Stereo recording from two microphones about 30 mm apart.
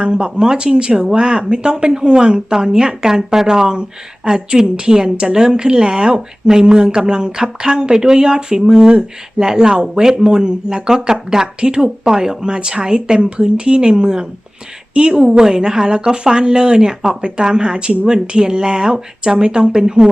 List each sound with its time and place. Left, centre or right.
0.1 s speech: right